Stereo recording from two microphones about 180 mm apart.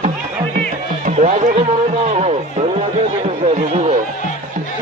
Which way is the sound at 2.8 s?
35° right (ahead or behind).